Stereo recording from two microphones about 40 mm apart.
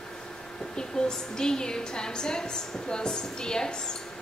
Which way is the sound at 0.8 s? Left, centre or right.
Centre.